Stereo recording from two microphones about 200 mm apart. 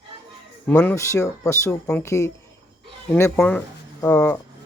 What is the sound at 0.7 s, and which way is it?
Speech, 10° left (ahead or behind).